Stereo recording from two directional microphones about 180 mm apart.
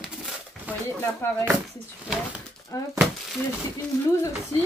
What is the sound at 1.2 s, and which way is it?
Speech, 15° left (ahead or behind).